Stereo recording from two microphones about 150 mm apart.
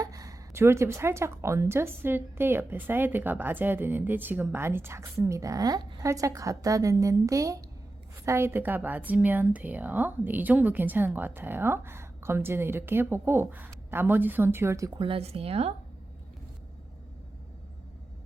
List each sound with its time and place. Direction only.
0.0 s a woman's voice: 25° right (ahead or behind)
14.9 s speech: 35° right (ahead or behind)